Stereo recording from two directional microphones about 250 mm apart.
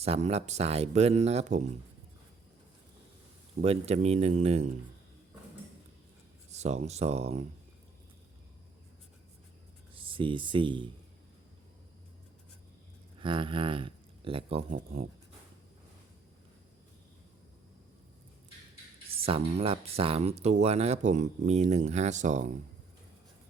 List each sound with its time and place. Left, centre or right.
0.0 s speech: right
3.6 s speech: right
6.5 s speech: right
9.9 s speech: right
13.1 s speech: centre
19.1 s speech: right